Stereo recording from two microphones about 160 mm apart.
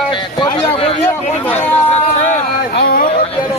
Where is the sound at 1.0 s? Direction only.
15° left (ahead or behind).